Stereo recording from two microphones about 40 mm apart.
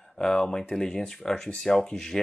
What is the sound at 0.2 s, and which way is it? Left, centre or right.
Speech, centre.